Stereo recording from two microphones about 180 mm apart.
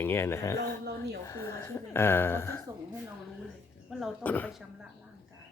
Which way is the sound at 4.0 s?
10° left (ahead or behind).